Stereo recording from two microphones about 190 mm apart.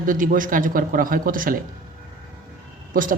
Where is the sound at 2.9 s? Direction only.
45° right (ahead or behind).